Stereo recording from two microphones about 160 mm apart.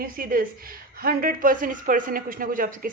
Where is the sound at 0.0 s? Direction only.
65° right (ahead or behind).